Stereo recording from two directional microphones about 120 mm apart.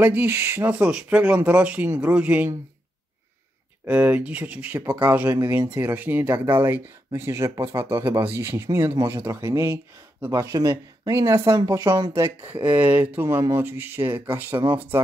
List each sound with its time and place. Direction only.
0.0 s speech: 15° right (ahead or behind)
3.8 s speech: 15° right (ahead or behind); by 12.3 s 35° right (ahead or behind)
12.4 s speech: 15° right (ahead or behind)